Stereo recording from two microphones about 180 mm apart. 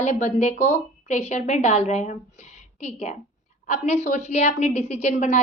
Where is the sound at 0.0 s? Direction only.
40° left (ahead or behind).